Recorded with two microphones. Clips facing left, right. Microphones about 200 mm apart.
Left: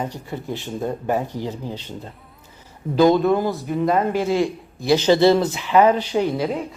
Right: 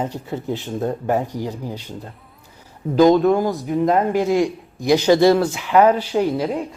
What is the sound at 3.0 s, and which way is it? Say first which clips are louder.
Speech: right 2 dB; 15° right (ahead or behind).